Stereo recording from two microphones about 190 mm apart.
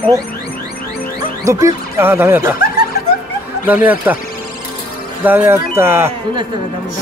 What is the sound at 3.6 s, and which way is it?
Speech, 10° right (ahead or behind).